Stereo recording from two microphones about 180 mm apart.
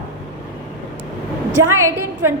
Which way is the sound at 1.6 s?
15° right (ahead or behind).